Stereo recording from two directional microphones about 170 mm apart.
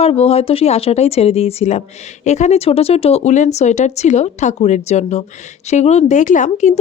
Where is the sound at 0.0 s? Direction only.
35° left (ahead or behind).